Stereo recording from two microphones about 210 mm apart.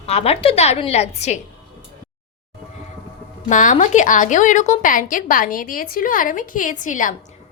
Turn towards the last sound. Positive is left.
turn(degrees=35)  # may be behind; listen again after turning